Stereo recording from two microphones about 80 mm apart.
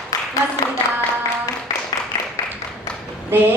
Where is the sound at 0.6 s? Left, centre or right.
Left.